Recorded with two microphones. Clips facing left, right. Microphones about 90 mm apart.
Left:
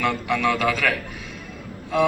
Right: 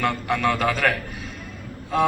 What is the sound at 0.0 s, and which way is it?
A man's voice, 40° right (ahead or behind).